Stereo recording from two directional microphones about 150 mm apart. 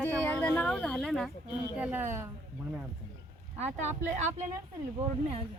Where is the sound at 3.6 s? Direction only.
50° right (ahead or behind).